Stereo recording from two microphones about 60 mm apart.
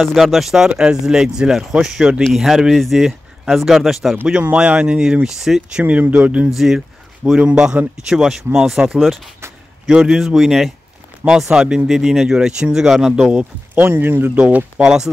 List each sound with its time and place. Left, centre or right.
0.0 s speech: centre
0.7 s speech: centre
4.3 s speech: centre
5.8 s speech: right
6.5 s speech: centre
9.0 s speech: centre
9.9 s speech: centre
13.7 s speech: right
14.8 s speech: centre